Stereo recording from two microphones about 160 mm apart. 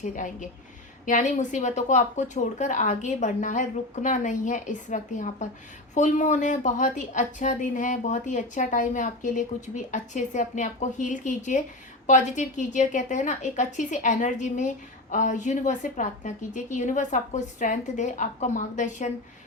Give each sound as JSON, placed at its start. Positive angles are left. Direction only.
{"t": 0.0, "sound": "a woman's voice", "side_deg": 50}